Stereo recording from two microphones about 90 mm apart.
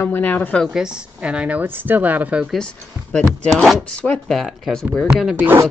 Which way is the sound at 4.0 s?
15° left (ahead or behind).